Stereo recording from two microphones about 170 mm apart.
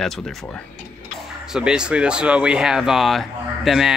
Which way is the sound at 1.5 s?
5° right (ahead or behind).